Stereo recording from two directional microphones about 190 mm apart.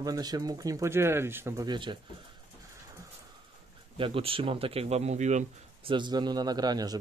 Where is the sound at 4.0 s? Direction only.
30° right (ahead or behind).